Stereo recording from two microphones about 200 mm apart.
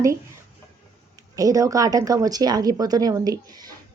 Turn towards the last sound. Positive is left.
turn(degrees=-20)  # may be behind; listen again after turning